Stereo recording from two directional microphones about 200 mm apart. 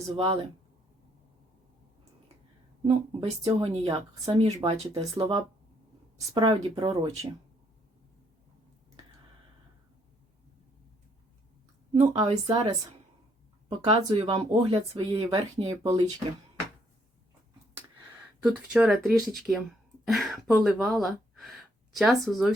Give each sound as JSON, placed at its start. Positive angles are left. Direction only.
{"t": 0.1, "sound": "speech", "side_deg": -25}
{"t": 2.8, "sound": "speech", "side_deg": -25}
{"t": 11.9, "sound": "a woman's voice", "side_deg": -35}
{"t": 13.7, "sound": "speech", "side_deg": -30}
{"t": 18.4, "sound": "speech", "side_deg": -5}
{"t": 21.0, "sound": "gasp", "side_deg": 0}
{"t": 21.9, "sound": "speech", "side_deg": 0}